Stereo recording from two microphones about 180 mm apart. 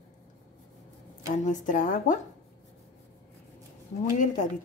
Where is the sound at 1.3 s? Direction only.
45° left (ahead or behind).